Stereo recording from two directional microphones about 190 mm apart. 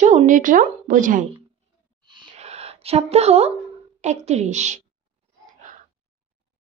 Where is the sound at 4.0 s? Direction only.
35° right (ahead or behind).